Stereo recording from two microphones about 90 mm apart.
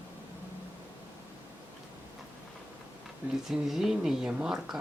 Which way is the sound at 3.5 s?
5° right (ahead or behind).